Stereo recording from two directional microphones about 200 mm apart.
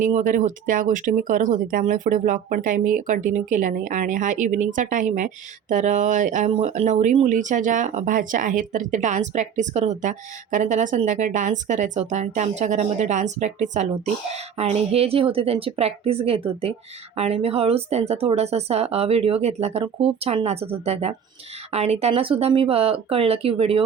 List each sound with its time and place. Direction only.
0.0 s speech: 40° right (ahead or behind)